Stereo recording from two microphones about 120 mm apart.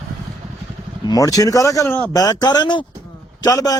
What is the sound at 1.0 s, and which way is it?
A man's voice, 30° left (ahead or behind).